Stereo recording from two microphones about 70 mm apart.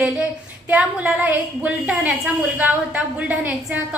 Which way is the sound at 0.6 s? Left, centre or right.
Right.